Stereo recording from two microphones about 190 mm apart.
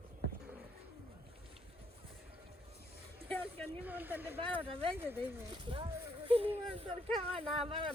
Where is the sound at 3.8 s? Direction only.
10° right (ahead or behind).